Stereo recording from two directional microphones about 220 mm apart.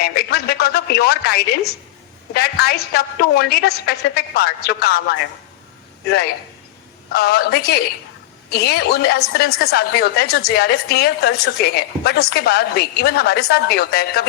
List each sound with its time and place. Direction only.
0.0 s a woman's voice: 45° left (ahead or behind)